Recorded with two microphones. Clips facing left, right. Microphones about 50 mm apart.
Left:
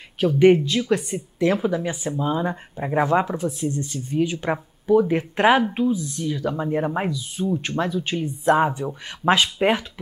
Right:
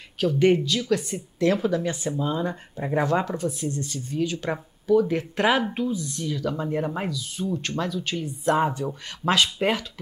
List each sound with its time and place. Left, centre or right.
0.2 s speech: left
5.6 s speech: centre